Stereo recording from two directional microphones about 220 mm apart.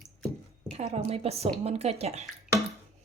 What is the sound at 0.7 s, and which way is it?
Speech, 30° right (ahead or behind).